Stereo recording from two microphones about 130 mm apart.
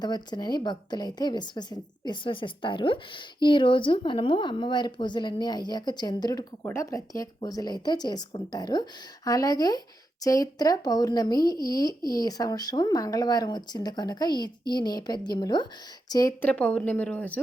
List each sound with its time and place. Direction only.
0.0 s speech: 35° left (ahead or behind)
16.4 s speech: 10° left (ahead or behind)